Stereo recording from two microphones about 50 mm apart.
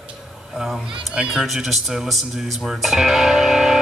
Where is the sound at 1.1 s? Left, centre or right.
Centre.